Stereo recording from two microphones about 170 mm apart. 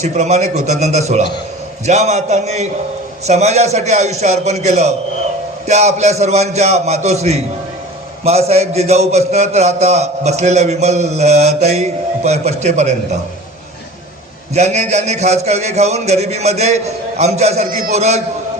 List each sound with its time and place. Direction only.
0.0 s a man's voice: 40° right (ahead or behind)
14.5 s a man's voice: 40° right (ahead or behind)